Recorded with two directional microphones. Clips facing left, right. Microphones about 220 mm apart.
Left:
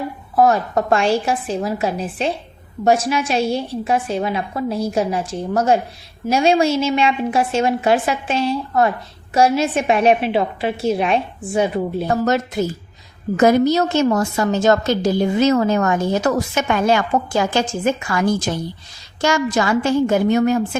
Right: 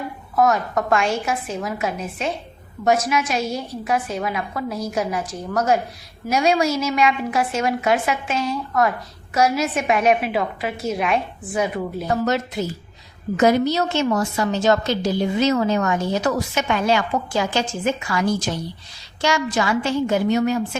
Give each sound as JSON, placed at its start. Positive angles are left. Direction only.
{"t": 0.3, "sound": "a woman's voice", "side_deg": 30}
{"t": 13.3, "sound": "a woman's voice", "side_deg": 45}